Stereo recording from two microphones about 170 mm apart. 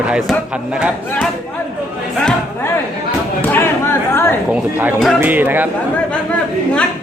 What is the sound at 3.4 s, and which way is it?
Chatter, 10° left (ahead or behind).